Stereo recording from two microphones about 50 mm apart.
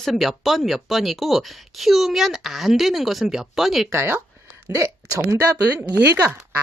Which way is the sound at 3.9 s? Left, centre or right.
Right.